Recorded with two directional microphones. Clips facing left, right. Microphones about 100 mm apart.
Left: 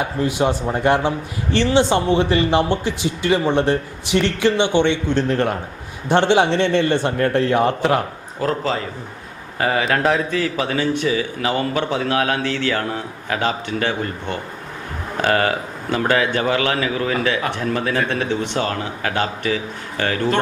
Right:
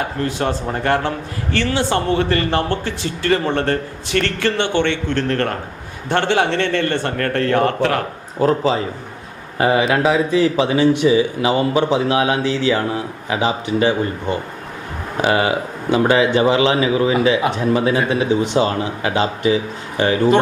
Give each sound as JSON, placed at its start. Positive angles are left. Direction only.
{"t": 0.0, "sound": "a man's voice", "side_deg": 15}
{"t": 8.4, "sound": "a man's voice", "side_deg": -20}
{"t": 9.9, "sound": "mantra", "side_deg": -5}
{"t": 10.3, "sound": "speech", "side_deg": -20}